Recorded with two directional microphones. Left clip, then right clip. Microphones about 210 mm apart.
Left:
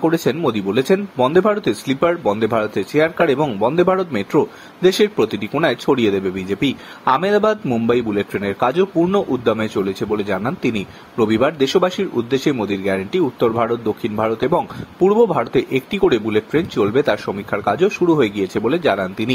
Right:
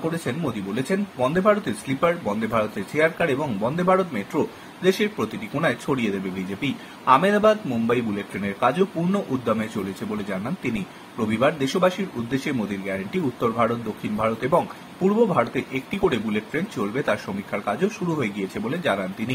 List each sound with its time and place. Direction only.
0.2 s speech: 45° left (ahead or behind)
11.1 s speech: 40° left (ahead or behind)
15.0 s speech: 40° left (ahead or behind)